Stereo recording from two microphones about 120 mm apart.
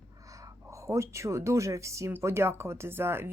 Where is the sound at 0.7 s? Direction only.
25° right (ahead or behind).